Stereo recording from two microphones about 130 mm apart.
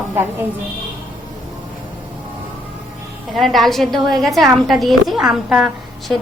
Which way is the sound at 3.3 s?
Centre (ahead or behind).